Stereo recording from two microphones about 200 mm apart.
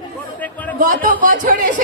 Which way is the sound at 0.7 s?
40° right (ahead or behind).